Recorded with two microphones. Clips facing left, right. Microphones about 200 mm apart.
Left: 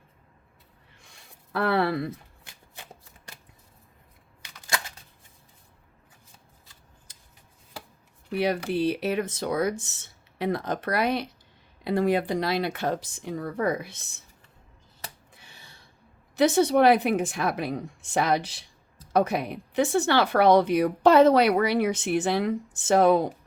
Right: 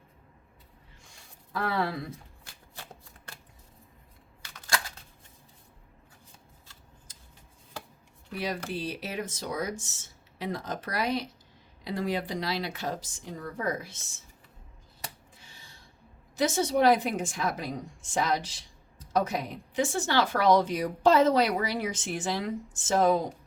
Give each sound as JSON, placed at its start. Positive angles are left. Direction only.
{"t": 1.5, "sound": "speech", "side_deg": 65}
{"t": 7.1, "sound": "rub", "side_deg": 65}
{"t": 8.3, "sound": "a woman's voice", "side_deg": 65}
{"t": 15.4, "sound": "gasp", "side_deg": 60}
{"t": 16.3, "sound": "a woman's voice", "side_deg": 60}